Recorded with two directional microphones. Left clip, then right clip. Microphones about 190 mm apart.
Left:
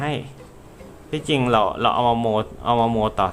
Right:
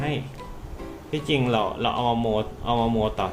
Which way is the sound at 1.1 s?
40° left (ahead or behind).